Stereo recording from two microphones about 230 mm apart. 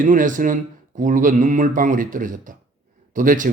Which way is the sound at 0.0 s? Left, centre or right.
Right.